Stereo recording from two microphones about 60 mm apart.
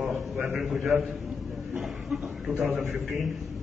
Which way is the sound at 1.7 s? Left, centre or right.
Centre.